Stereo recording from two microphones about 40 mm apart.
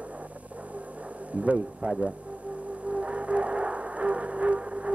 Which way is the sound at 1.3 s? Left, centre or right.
Right.